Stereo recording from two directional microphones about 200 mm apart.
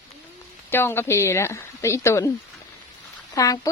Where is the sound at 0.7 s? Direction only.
10° left (ahead or behind).